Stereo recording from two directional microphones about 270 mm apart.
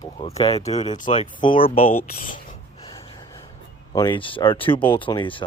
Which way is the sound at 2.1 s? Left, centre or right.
Left.